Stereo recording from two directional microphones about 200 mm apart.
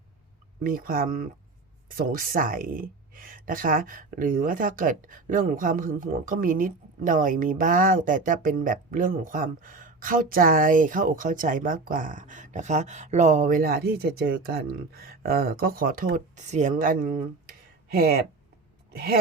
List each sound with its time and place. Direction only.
0.6 s speech: 45° right (ahead or behind)